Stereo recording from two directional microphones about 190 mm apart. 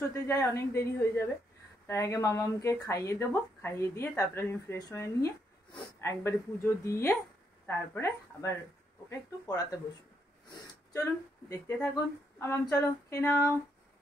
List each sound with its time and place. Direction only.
0.1 s speech: 15° left (ahead or behind)
10.9 s speech: 15° left (ahead or behind)